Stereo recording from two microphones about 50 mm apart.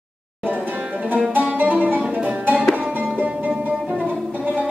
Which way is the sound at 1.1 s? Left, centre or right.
Right.